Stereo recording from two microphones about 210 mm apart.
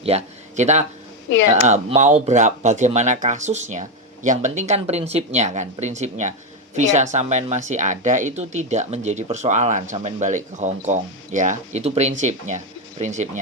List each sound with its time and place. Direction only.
0.0 s speech: 30° right (ahead or behind)